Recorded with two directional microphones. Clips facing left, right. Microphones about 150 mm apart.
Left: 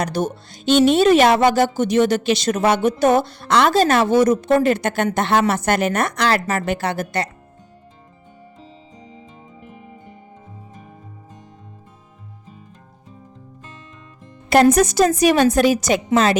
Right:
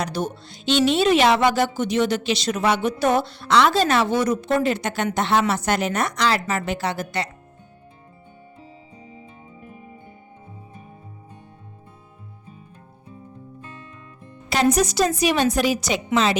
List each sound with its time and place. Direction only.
0.0 s speech: 45° left (ahead or behind)
6.4 s speech: 45° left (ahead or behind)
14.5 s speech: 50° left (ahead or behind)